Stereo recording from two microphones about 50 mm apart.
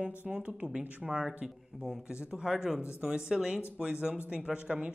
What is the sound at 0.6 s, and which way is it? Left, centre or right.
Speech, centre.